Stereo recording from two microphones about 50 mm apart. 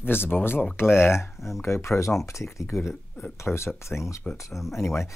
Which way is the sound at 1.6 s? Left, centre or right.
Left.